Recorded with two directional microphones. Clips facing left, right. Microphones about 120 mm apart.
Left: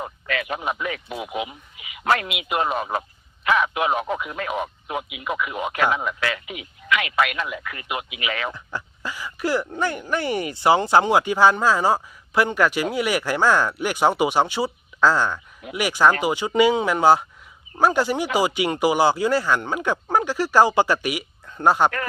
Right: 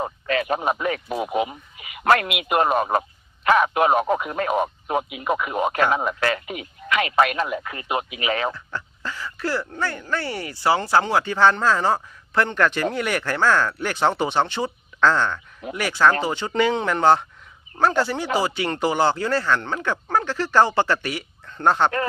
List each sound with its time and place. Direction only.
0.0 s speech: 35° right (ahead or behind)
8.5 s speech: 10° left (ahead or behind)